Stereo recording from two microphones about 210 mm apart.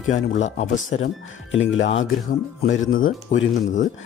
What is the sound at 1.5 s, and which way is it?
Speech, 65° left (ahead or behind).